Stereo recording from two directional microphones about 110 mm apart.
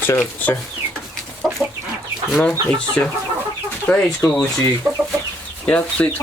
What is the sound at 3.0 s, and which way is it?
Speech, 25° left (ahead or behind).